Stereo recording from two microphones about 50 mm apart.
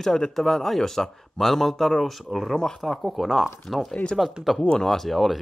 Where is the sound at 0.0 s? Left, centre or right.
Centre.